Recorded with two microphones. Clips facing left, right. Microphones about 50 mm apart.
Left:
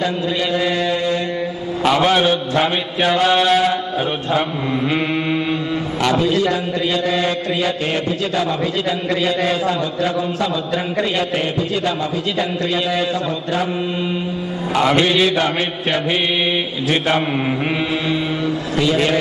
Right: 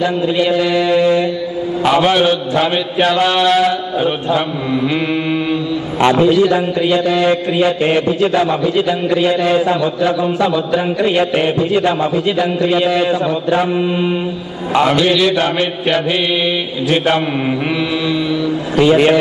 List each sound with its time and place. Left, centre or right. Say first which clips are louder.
0.0 s mantra: right 5 dB; right
3.4 s mantra: right 3 dB; centre
4.8 s mantra: right 2 dB; left
5.9 s a man's voice: right 7 dB; right
18.8 s a man's voice: right 7 dB; right